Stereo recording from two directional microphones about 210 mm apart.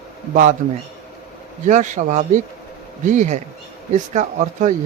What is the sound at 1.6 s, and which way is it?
Speech, 35° right (ahead or behind).